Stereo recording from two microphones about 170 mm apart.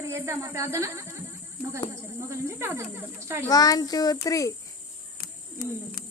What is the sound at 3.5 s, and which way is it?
A child's voice, 20° left (ahead or behind).